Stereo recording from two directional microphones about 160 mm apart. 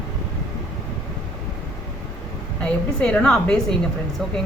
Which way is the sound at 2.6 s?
5° left (ahead or behind).